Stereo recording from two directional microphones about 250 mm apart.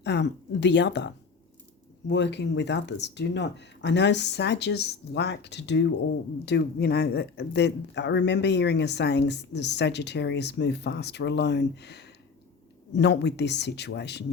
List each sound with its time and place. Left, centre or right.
0.0 s speech: left